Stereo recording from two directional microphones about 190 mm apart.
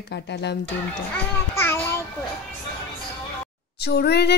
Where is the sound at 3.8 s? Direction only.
60° left (ahead or behind).